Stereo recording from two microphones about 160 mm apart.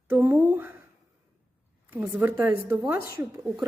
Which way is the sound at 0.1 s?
10° right (ahead or behind).